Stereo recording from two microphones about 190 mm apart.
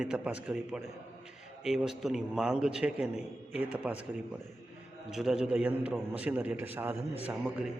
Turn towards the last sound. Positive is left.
turn(degrees=-5)  # may be behind; listen again after turning